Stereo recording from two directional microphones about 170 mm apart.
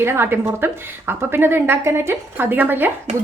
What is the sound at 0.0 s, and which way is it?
Speech, 15° right (ahead or behind).